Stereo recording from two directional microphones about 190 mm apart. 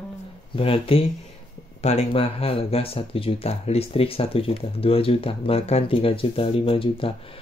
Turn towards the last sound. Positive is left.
turn(degrees=30)  # may be behind; listen again after turning